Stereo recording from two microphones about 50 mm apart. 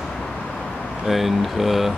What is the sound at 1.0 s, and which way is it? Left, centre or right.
Speech, centre.